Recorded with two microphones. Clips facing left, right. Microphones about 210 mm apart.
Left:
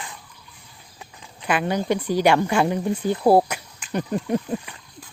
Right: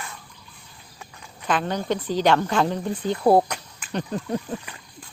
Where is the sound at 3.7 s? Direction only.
15° left (ahead or behind).